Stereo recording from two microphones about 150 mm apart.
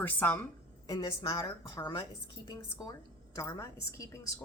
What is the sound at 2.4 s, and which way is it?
A woman's voice, 25° left (ahead or behind).